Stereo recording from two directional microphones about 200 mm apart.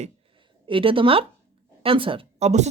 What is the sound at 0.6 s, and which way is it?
A woman's voice, 25° right (ahead or behind).